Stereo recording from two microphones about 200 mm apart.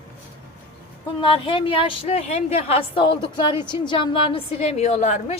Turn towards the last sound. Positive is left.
turn(degrees=35)  # may be behind; listen again after turning